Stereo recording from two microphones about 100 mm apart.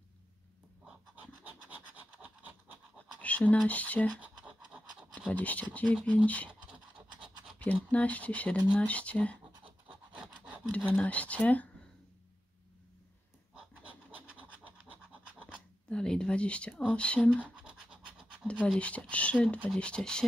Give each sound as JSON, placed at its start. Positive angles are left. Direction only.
{"t": 1.7, "sound": "scratch", "side_deg": -15}
{"t": 3.2, "sound": "a sound", "side_deg": 15}
{"t": 3.6, "sound": "speech", "side_deg": 15}
{"t": 4.2, "sound": "scratch", "side_deg": -10}
{"t": 5.3, "sound": "speech", "side_deg": 15}
{"t": 7.9, "sound": "speech", "side_deg": 15}
{"t": 9.8, "sound": "filing", "side_deg": -10}
{"t": 10.9, "sound": "speech", "side_deg": 15}
{"t": 13.8, "sound": "scratch", "side_deg": -15}
{"t": 15.9, "sound": "speech", "side_deg": 10}
{"t": 17.6, "sound": "scratch", "side_deg": -5}
{"t": 18.5, "sound": "speech", "side_deg": 10}